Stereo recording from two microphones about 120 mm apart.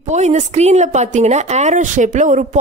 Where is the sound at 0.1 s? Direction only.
70° right (ahead or behind).